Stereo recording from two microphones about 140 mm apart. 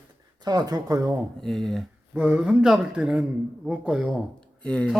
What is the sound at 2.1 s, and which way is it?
Speech, 10° right (ahead or behind).